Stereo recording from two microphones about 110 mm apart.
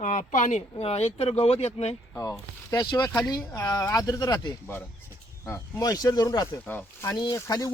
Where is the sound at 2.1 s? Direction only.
30° left (ahead or behind).